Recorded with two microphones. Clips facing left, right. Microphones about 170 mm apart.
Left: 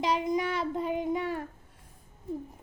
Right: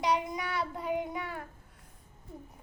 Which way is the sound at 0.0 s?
20° left (ahead or behind).